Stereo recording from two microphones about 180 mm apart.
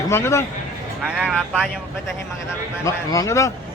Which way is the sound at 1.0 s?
5° right (ahead or behind).